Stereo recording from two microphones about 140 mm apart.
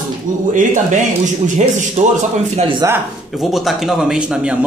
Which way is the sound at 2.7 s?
20° right (ahead or behind).